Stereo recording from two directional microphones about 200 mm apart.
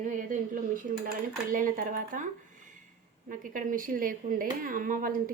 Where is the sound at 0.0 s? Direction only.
40° right (ahead or behind).